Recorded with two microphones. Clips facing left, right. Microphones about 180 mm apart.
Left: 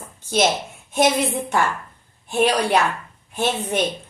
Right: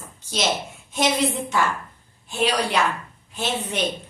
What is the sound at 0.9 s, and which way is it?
A woman's voice, 55° left (ahead or behind).